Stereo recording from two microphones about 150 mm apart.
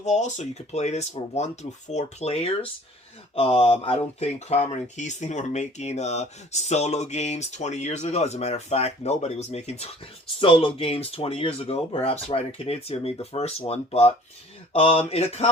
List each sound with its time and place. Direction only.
0.0 s speech: 50° left (ahead or behind)